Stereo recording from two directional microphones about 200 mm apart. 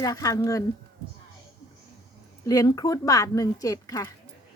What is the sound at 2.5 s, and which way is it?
A woman's voice, 20° left (ahead or behind).